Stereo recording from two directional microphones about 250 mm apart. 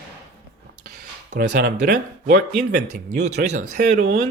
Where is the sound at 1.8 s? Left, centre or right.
Right.